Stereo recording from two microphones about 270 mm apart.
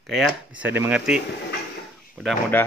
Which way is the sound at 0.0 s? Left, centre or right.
Centre.